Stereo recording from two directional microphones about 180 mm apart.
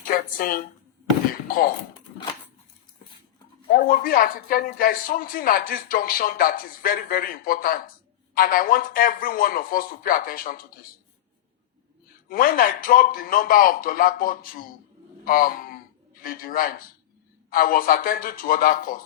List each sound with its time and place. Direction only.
0.1 s speech: 50° left (ahead or behind)
3.8 s speech: 50° left (ahead or behind)
12.3 s speech: 55° left (ahead or behind)